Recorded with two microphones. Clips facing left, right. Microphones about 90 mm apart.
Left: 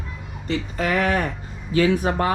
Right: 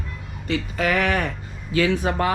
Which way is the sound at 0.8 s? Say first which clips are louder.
Left 1 dB; 35° left (ahead or behind).